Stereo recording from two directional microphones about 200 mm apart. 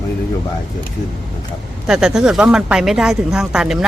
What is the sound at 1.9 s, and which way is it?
A woman's voice, 5° right (ahead or behind).